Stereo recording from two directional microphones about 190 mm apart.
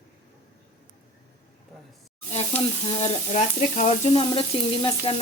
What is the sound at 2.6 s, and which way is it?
Frying, 30° left (ahead or behind).